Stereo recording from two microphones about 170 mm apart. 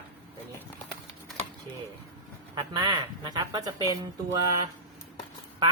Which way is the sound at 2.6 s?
25° right (ahead or behind).